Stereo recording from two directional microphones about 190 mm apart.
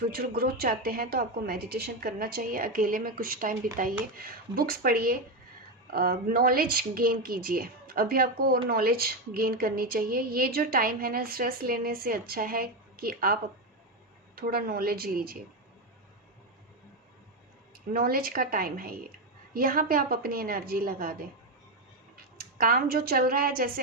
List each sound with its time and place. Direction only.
0.1 s a woman's voice: 50° right (ahead or behind)
17.9 s a woman's voice: 50° right (ahead or behind)
22.4 s a woman's voice: 50° right (ahead or behind)